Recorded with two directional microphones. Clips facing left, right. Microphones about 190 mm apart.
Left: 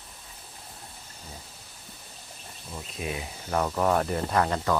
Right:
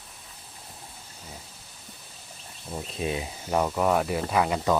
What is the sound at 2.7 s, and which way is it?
Speech, 25° right (ahead or behind).